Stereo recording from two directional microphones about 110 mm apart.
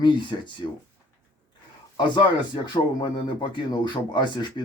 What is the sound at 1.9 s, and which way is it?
Speech, 45° left (ahead or behind).